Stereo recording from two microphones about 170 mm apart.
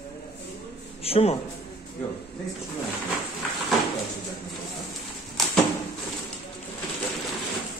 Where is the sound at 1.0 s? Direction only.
35° left (ahead or behind).